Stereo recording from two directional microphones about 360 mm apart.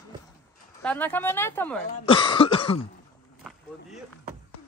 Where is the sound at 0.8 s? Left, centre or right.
Centre.